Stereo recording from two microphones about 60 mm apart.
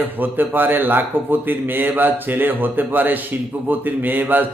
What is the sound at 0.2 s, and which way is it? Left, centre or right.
Speech, right.